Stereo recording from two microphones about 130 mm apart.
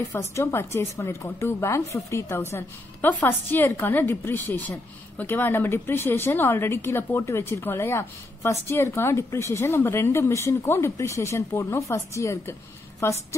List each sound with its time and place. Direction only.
0.4 s speech: 20° left (ahead or behind)